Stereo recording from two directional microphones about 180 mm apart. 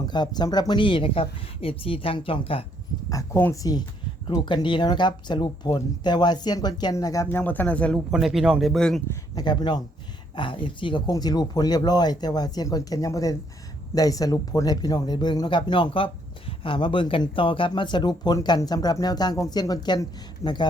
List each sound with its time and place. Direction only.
0.0 s speech: 25° left (ahead or behind)
3.1 s speech: 15° left (ahead or behind)
9.0 s speech: 25° left (ahead or behind)